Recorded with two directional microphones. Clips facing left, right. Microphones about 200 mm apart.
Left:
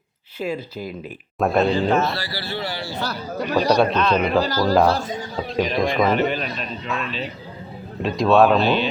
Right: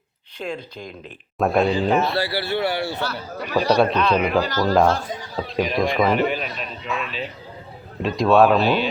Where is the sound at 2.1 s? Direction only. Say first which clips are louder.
Right 6 dB; 60° right (ahead or behind).